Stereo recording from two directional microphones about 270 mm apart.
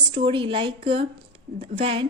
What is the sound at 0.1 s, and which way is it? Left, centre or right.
A woman's voice, centre.